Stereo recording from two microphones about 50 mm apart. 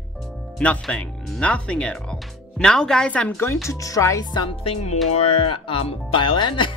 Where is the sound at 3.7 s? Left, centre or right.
Left.